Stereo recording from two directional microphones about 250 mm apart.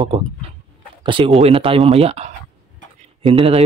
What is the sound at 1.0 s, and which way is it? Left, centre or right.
Speech, centre.